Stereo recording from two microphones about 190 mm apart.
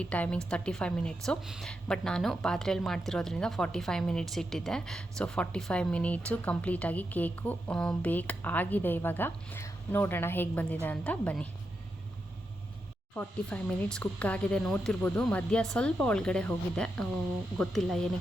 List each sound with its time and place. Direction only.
0.0 s a woman's voice: 5° left (ahead or behind)
13.1 s a woman's voice: 5° left (ahead or behind)